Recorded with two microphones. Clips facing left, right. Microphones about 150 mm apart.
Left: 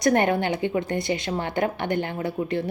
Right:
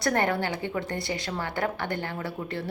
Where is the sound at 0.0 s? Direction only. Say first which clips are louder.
Left 5 dB; 20° left (ahead or behind).